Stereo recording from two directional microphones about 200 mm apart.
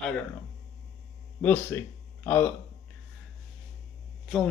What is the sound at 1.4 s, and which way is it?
Speech, 10° left (ahead or behind).